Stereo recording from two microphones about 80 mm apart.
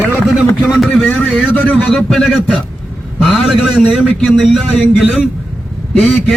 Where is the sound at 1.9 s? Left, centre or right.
Centre.